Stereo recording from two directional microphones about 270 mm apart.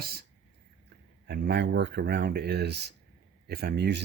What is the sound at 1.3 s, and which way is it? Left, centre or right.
Speech, right.